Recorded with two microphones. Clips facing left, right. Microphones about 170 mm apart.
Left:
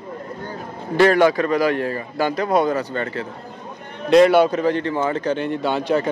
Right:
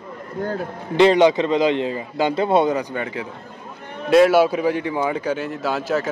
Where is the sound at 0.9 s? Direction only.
20° right (ahead or behind); by 6.0 s centre (ahead or behind).